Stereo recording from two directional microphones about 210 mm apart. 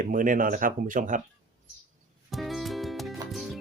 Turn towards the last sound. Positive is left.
turn(degrees=0)  # may be behind; listen again after turning